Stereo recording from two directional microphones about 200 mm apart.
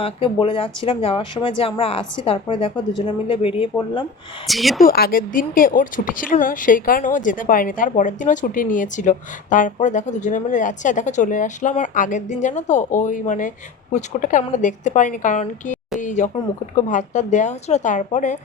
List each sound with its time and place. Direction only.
0.0 s speech: 25° left (ahead or behind)
4.4 s speech: centre (ahead or behind)
4.8 s speech: 50° left (ahead or behind)